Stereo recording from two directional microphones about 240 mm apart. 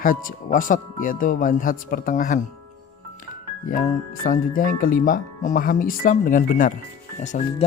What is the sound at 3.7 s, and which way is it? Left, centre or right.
Speech, left.